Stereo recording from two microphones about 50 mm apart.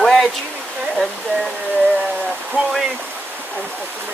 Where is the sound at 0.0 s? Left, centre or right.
Centre.